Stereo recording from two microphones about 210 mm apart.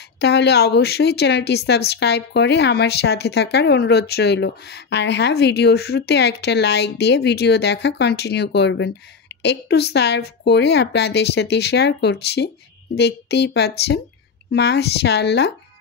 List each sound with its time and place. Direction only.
0.2 s a woman's voice: 55° left (ahead or behind)